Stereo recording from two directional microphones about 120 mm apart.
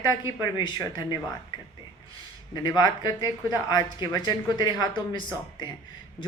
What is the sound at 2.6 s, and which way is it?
A woman's voice, 35° left (ahead or behind).